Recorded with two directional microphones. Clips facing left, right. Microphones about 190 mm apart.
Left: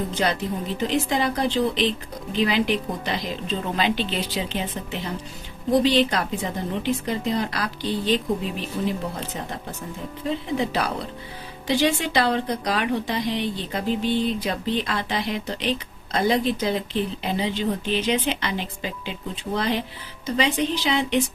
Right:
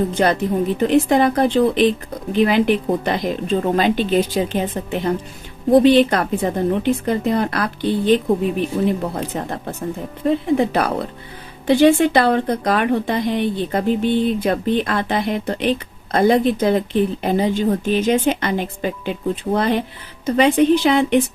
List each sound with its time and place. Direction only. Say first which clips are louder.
0.1 s a woman's voice: right 7 dB; 55° right (ahead or behind)